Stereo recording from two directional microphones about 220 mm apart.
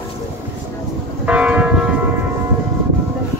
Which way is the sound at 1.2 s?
5° right (ahead or behind).